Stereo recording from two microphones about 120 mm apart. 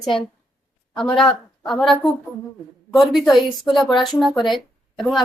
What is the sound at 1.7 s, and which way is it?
Speech, centre (ahead or behind).